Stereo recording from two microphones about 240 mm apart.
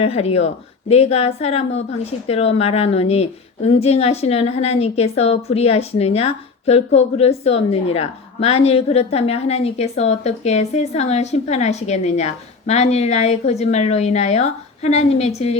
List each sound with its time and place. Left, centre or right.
0.0 s speech: left